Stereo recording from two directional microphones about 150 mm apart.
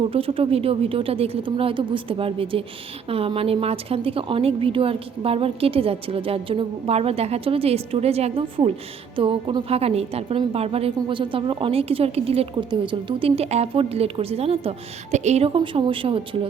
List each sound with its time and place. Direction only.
0.0 s a woman's voice: 40° right (ahead or behind)